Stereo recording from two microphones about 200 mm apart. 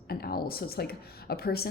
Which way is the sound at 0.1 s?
50° left (ahead or behind).